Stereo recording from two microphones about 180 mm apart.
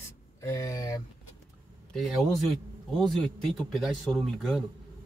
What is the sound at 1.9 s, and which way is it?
A man's voice, centre (ahead or behind).